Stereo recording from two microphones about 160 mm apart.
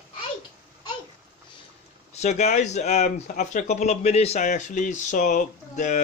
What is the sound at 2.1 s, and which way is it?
Speech, 45° left (ahead or behind).